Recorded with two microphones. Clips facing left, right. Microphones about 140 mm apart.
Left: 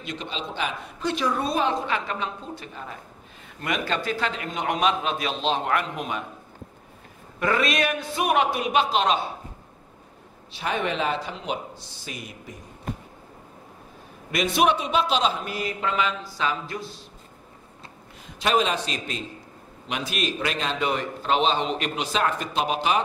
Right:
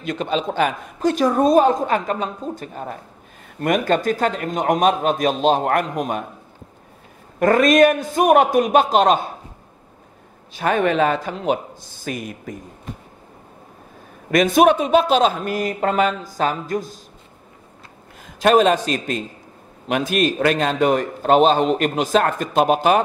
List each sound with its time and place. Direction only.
0.0 s a man's voice: 50° right (ahead or behind)
7.3 s a man's voice: 45° right (ahead or behind)
10.5 s a man's voice: 50° right (ahead or behind)
14.3 s a man's voice: 45° right (ahead or behind)
18.2 s a man's voice: 45° right (ahead or behind)